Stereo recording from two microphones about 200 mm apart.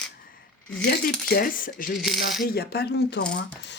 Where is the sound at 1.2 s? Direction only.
45° left (ahead or behind).